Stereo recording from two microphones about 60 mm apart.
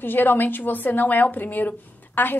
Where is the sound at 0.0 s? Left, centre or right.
Left.